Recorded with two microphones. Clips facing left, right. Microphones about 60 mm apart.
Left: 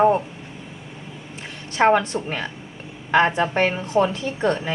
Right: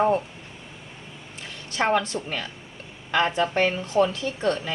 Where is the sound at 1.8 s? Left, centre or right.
Left.